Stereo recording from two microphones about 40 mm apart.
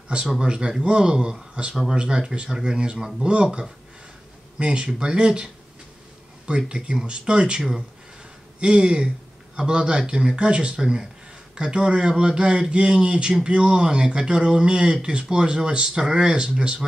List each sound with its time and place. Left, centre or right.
0.4 s speech: right
10.8 s speech: centre